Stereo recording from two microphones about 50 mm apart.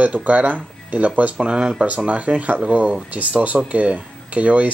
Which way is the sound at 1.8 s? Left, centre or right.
Right.